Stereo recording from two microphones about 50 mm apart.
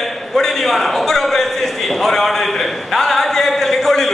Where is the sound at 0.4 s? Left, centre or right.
Centre.